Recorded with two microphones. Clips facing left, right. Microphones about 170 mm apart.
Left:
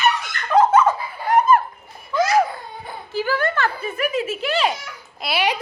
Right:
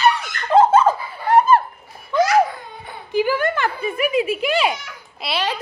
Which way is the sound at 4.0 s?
10° right (ahead or behind).